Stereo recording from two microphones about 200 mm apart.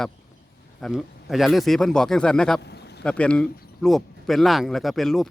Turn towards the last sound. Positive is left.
turn(degrees=0)  # may be behind; listen again after turning